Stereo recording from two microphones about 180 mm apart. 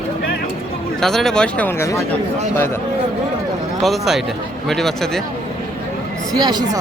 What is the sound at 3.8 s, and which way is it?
Speech, centre (ahead or behind).